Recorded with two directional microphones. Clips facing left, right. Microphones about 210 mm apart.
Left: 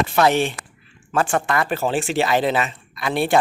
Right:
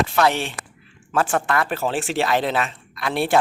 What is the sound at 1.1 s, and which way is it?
Speech, centre (ahead or behind).